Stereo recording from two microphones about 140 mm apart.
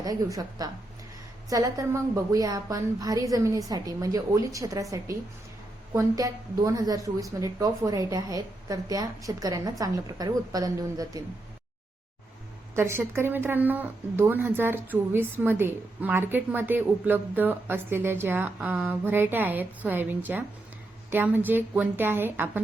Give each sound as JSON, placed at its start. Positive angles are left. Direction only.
{"t": 0.0, "sound": "a woman's voice", "side_deg": -25}
{"t": 12.7, "sound": "speech", "side_deg": -20}